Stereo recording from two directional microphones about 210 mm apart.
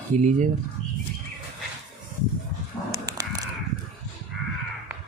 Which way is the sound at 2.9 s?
15° right (ahead or behind).